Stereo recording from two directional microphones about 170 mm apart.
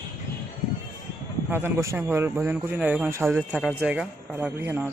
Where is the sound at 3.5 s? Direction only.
Centre (ahead or behind).